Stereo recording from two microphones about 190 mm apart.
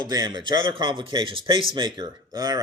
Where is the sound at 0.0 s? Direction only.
20° right (ahead or behind).